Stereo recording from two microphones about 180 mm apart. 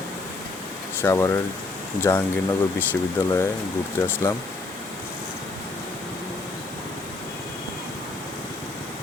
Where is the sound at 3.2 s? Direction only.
10° left (ahead or behind).